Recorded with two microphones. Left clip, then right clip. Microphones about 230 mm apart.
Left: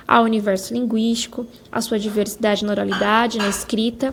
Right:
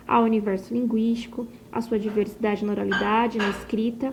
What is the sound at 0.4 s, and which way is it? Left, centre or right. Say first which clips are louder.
A woman's voice: left 6 dB; left.